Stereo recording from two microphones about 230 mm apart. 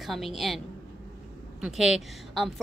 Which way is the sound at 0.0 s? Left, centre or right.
Centre.